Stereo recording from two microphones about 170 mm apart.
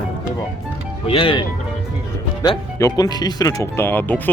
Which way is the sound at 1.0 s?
30° left (ahead or behind).